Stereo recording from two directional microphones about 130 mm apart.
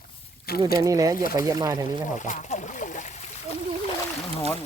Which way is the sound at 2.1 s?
75° left (ahead or behind).